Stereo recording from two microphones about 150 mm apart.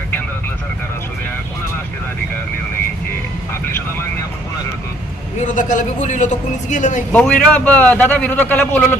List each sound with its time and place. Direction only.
5.5 s speech: 55° left (ahead or behind)
7.1 s a man's voice: 10° left (ahead or behind)